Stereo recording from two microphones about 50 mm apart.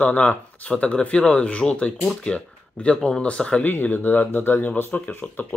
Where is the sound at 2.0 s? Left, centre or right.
Centre.